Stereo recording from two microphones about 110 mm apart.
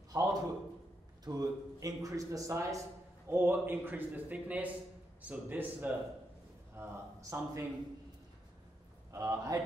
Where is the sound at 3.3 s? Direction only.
20° right (ahead or behind).